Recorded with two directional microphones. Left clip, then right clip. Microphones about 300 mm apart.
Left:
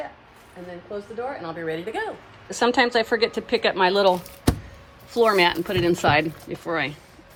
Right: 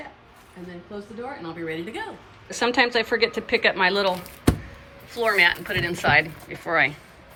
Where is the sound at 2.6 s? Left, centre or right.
Centre.